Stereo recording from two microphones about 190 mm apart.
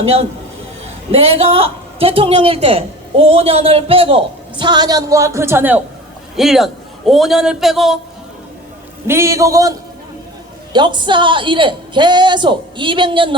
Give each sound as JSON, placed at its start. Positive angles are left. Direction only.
{"t": 0.0, "sound": "a man's voice", "side_deg": -30}
{"t": 9.0, "sound": "a man's voice", "side_deg": -15}